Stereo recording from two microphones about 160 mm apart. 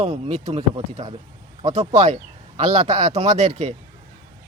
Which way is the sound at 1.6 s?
45° right (ahead or behind).